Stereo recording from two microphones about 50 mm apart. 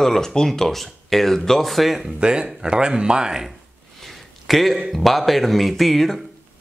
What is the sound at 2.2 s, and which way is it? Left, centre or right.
Speech, centre.